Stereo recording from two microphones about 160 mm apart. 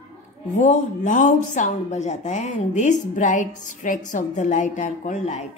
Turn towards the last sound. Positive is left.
turn(degrees=45)  # may be behind; listen again after turning